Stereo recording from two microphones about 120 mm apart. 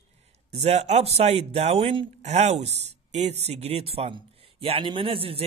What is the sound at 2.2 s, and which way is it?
A man's voice, 65° right (ahead or behind).